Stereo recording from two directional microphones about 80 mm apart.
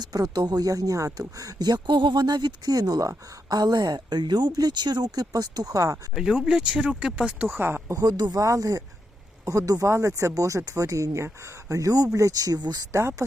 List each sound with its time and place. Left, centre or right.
0.0 s speech: right
6.1 s speech: centre
7.5 s speech: right
7.9 s speech: right
8.4 s speech: right
12.9 s speech: right